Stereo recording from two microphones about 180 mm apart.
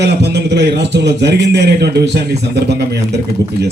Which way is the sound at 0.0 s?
70° right (ahead or behind).